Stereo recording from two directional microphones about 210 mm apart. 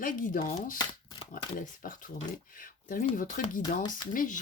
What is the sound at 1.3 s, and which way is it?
Speech, 40° left (ahead or behind).